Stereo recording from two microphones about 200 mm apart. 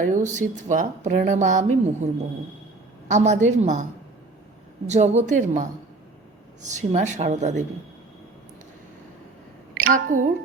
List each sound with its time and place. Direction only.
0.0 s speech: 40° right (ahead or behind)
3.1 s speech: 35° right (ahead or behind)
4.9 s speech: 35° right (ahead or behind)
9.9 s speech: 40° right (ahead or behind)